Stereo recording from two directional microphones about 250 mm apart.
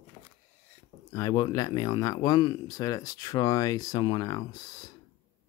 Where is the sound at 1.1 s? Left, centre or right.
Centre.